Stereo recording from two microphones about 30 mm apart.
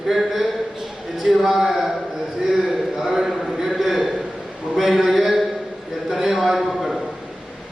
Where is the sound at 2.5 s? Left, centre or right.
Centre.